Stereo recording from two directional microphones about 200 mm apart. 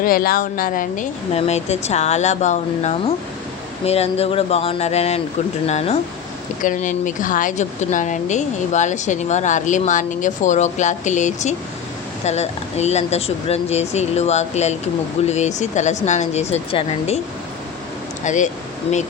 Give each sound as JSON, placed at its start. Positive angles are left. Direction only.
{"t": 0.0, "sound": "speech", "side_deg": 45}
{"t": 18.2, "sound": "speech", "side_deg": 40}